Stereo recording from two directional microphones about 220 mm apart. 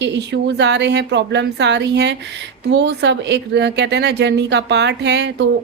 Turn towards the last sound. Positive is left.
turn(degrees=-50)  # may be behind; listen again after turning